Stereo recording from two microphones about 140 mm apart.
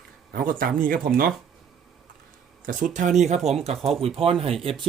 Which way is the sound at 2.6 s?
65° right (ahead or behind).